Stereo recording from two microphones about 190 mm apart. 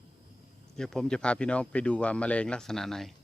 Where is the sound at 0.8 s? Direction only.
5° left (ahead or behind).